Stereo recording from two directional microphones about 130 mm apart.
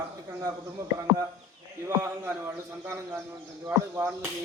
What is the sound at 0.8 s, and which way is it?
Speech, 25° right (ahead or behind).